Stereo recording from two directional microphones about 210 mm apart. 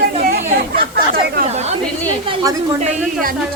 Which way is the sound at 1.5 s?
30° right (ahead or behind).